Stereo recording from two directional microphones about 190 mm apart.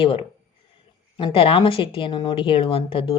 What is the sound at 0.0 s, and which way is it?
A woman's voice, 30° left (ahead or behind).